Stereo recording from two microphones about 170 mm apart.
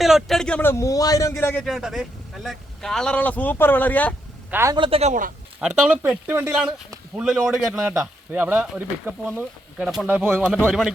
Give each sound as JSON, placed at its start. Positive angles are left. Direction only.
{"t": 0.0, "sound": "a man's voice", "side_deg": 0}
{"t": 1.6, "sound": "speech", "side_deg": 0}
{"t": 4.5, "sound": "speech", "side_deg": -15}
{"t": 4.8, "sound": "speech", "side_deg": -35}
{"t": 5.5, "sound": "speech", "side_deg": -10}